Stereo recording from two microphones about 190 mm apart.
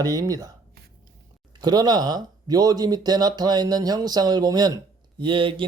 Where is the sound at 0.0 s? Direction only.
20° right (ahead or behind).